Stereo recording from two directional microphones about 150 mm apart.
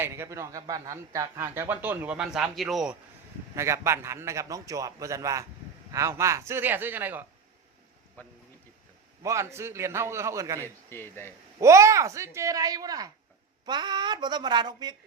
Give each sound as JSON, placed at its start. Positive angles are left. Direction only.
{"t": 0.0, "sound": "speech", "side_deg": -20}
{"t": 3.5, "sound": "a man's voice", "side_deg": -20}
{"t": 8.2, "sound": "speech", "side_deg": 10}
{"t": 9.2, "sound": "speech", "side_deg": -20}
{"t": 10.8, "sound": "speech", "side_deg": 15}
{"t": 11.6, "sound": "a man's voice", "side_deg": -20}